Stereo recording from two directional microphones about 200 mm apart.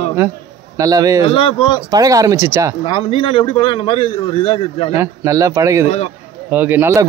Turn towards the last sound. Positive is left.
turn(degrees=-10)  # may be behind; listen again after turning